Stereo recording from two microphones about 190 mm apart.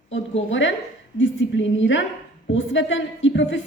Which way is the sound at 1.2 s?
80° left.